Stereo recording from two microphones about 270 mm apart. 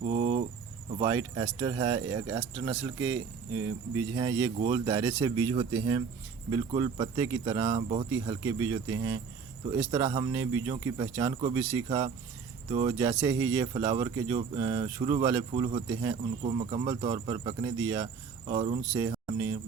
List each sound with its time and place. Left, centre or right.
0.0 s cricket: right
1.0 s speech: centre